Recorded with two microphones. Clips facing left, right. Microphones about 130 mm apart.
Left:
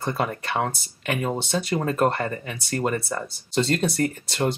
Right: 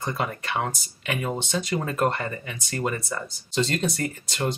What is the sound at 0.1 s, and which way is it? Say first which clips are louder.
Speech: left 3 dB; 40° left (ahead or behind).